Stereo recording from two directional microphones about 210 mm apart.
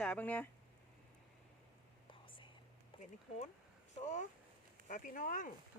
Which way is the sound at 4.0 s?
35° left (ahead or behind).